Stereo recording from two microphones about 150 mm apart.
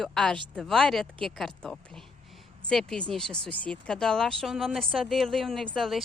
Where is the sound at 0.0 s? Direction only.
5° left (ahead or behind).